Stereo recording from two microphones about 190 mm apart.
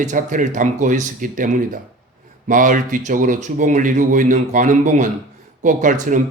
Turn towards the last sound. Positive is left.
turn(degrees=-40)  # may be behind; listen again after turning